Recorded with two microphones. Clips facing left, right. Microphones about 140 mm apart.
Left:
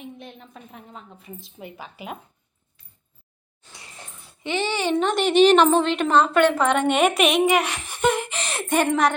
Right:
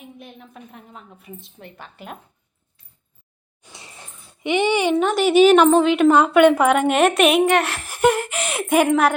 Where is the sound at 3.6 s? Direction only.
20° right (ahead or behind).